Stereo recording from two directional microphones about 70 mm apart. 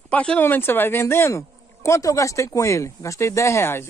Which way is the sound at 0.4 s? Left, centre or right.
Left.